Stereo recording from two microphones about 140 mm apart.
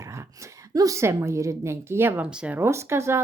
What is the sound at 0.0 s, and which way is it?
A woman's voice, 20° right (ahead or behind).